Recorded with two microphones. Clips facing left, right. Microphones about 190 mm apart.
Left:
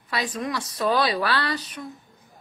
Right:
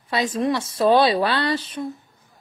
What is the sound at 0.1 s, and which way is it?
A woman's voice, 25° right (ahead or behind).